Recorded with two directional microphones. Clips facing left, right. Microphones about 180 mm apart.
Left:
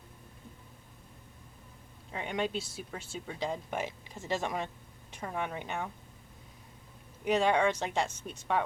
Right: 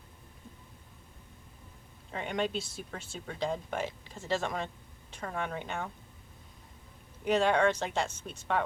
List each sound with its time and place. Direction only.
2.1 s speech: 10° left (ahead or behind)
7.3 s speech: 10° left (ahead or behind)